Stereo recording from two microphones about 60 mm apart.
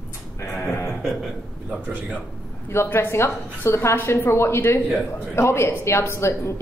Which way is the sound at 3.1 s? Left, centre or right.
Left.